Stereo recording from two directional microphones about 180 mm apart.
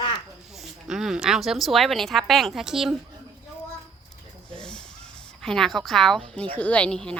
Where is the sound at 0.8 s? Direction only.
5° right (ahead or behind).